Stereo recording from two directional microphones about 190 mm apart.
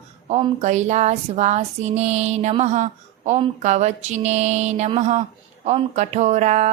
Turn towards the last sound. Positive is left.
turn(degrees=-40)  # may be behind; listen again after turning